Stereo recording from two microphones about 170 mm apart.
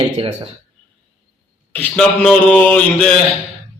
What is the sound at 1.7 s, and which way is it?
A man's voice, 10° left (ahead or behind).